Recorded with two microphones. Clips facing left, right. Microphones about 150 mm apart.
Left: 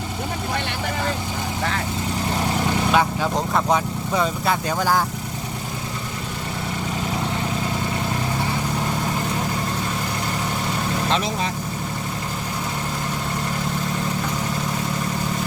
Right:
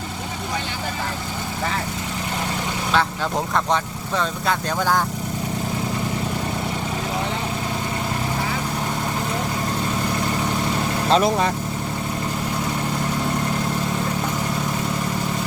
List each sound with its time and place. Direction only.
3.5 s speech: 10° left (ahead or behind)
11.1 s speech: 50° right (ahead or behind)